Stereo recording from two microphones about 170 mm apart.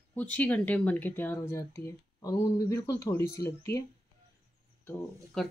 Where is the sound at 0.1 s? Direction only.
10° left (ahead or behind).